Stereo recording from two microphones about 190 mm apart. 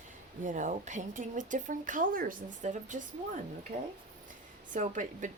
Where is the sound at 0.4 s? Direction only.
40° right (ahead or behind).